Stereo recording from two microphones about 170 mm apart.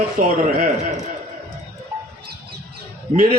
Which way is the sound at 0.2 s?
50° right (ahead or behind).